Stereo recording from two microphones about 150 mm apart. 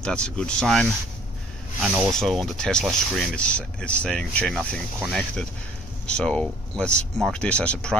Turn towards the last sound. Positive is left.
turn(degrees=5)  # may be behind; listen again after turning